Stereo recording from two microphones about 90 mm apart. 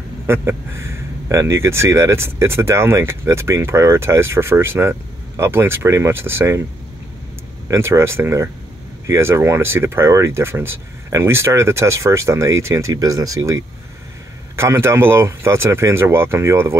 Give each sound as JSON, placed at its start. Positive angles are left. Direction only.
{"t": 0.3, "sound": "speech", "side_deg": -30}
{"t": 7.6, "sound": "speech", "side_deg": -30}
{"t": 14.5, "sound": "speech", "side_deg": -30}